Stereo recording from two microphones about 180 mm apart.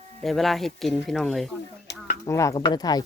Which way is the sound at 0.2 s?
Centre (ahead or behind).